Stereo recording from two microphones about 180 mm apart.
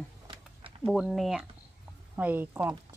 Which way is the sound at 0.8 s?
Centre (ahead or behind).